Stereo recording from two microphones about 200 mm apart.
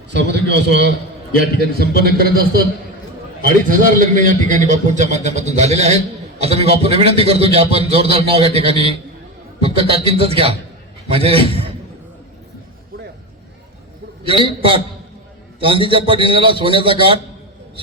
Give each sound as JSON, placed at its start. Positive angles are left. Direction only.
{"t": 0.1, "sound": "a man's voice", "side_deg": -60}
{"t": 3.7, "sound": "a man's voice", "side_deg": -40}
{"t": 14.4, "sound": "a man's voice", "side_deg": -25}